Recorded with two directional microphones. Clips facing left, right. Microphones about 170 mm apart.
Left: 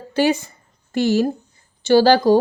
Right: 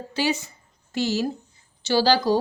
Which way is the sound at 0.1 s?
55° left (ahead or behind).